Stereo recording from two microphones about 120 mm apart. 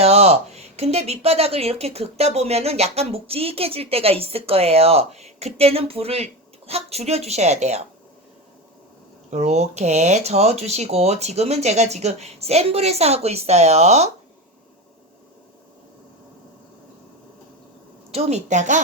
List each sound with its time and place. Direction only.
0.0 s speech: 60° right (ahead or behind)
9.3 s speech: 70° right (ahead or behind)
18.1 s a woman's voice: 65° right (ahead or behind); by 18.8 s 85° right